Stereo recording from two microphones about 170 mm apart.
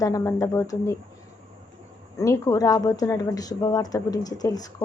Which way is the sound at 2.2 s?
20° left (ahead or behind).